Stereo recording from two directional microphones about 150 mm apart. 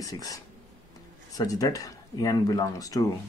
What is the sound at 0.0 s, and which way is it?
Speech, 25° left (ahead or behind).